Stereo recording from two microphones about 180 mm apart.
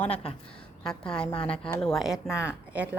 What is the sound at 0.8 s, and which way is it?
A woman's voice, 5° left (ahead or behind).